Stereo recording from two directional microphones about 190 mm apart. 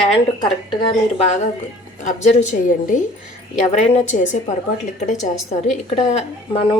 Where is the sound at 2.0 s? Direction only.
40° left (ahead or behind).